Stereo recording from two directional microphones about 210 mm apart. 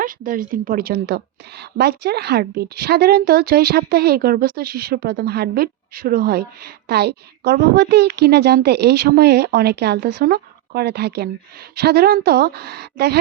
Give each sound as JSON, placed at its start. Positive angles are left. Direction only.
{"t": 0.0, "sound": "a woman's voice", "side_deg": -40}